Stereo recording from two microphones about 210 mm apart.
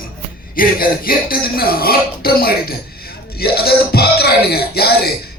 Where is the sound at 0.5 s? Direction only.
45° left (ahead or behind).